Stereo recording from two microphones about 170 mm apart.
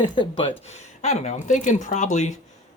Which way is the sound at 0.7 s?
40° left (ahead or behind).